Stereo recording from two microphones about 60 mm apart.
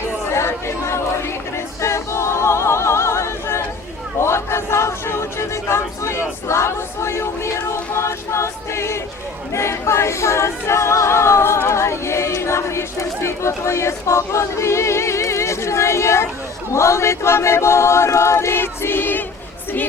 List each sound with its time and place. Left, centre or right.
0.3 s chatter: left
1.5 s a capella: left
4.2 s a sound: left
9.5 s a capella: left
16.7 s choir: left